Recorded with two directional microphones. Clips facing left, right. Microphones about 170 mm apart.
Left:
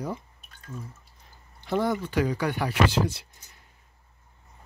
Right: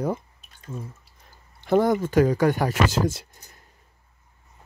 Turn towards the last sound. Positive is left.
turn(degrees=-45)  # may be behind; listen again after turning